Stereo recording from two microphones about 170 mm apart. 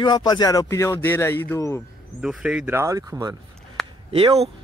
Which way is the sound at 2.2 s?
5° right (ahead or behind).